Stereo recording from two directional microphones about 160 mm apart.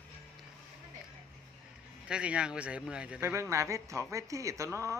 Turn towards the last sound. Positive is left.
turn(degrees=-20)  # may be behind; listen again after turning